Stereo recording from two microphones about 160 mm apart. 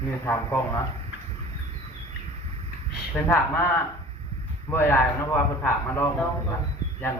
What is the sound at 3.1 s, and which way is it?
Speech, 5° left (ahead or behind).